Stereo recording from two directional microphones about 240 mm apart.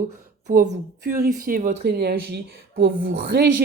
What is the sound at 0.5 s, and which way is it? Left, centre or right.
Speech, right.